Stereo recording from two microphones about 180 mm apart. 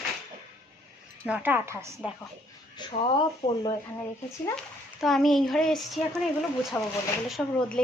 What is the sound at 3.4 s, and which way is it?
Speech, 20° left (ahead or behind).